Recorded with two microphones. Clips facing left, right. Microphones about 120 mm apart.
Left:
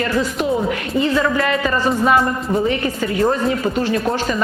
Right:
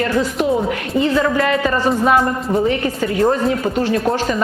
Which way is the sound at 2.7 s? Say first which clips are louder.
Right 1 dB; 45° right (ahead or behind).